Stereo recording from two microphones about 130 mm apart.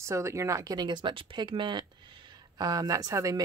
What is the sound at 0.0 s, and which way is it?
Speech, 20° right (ahead or behind).